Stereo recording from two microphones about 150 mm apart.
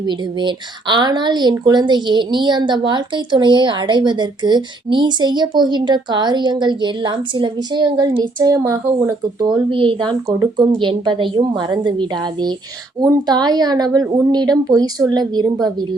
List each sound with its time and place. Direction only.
0.0 s a woman's voice: 30° right (ahead or behind)